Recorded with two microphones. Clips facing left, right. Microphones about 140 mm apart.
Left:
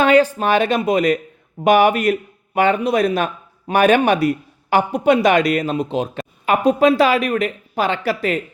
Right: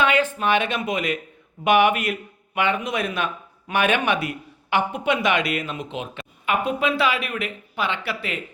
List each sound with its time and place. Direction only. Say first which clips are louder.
0.0 s speech: left 7 dB; 35° left (ahead or behind)